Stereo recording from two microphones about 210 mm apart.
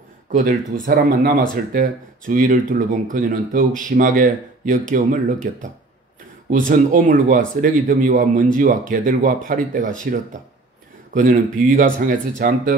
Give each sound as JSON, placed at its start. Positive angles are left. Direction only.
{"t": 0.8, "sound": "speech", "side_deg": -45}